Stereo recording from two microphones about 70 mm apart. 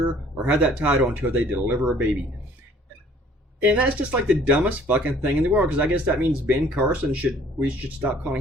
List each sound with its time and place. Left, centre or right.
0.4 s speech: right
3.6 s speech: right